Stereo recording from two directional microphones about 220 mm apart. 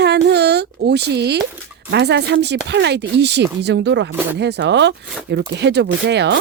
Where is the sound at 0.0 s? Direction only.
50° right (ahead or behind).